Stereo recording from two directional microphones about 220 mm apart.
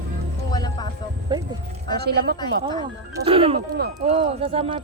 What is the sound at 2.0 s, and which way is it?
Speech, 45° right (ahead or behind).